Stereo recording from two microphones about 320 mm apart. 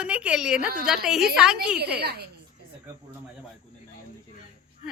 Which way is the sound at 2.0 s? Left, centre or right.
Right.